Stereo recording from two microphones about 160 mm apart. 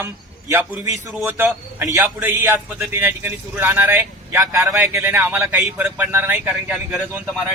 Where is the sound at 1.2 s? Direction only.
15° right (ahead or behind).